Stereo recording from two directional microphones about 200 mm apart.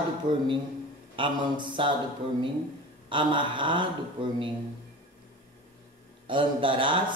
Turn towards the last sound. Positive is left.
turn(degrees=-25)  # may be behind; listen again after turning